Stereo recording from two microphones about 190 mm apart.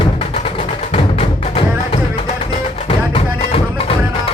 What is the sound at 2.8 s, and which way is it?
Music, 30° left (ahead or behind).